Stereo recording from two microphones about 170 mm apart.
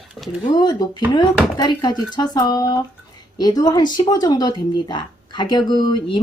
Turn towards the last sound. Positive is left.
turn(degrees=25)  # may be behind; listen again after turning